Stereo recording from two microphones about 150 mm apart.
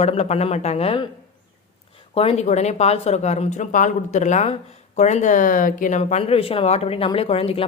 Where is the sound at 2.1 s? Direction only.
40° left (ahead or behind).